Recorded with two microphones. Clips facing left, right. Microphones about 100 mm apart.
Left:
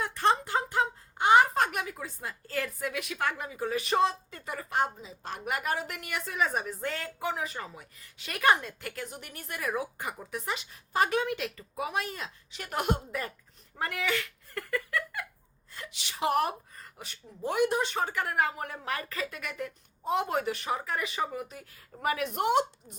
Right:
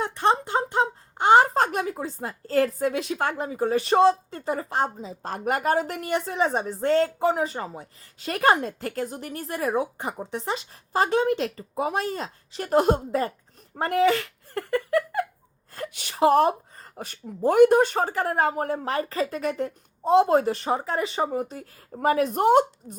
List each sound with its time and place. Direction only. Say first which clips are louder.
0.0 s speech: right 4 dB; 20° right (ahead or behind)
13.7 s a sound: right 11 dB; 35° right (ahead or behind)
15.7 s a woman's voice: right 8 dB; 50° right (ahead or behind)
16.3 s speech: right 7 dB; 30° right (ahead or behind)
17.0 s speech: right 11 dB; 45° right (ahead or behind)